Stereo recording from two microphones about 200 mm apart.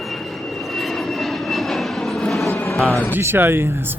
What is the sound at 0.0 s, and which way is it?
Vehicle, centre (ahead or behind).